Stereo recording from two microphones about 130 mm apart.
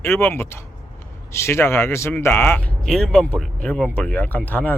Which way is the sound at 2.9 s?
5° left (ahead or behind).